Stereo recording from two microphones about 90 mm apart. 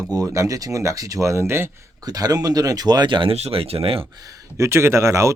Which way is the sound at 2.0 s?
45° right (ahead or behind).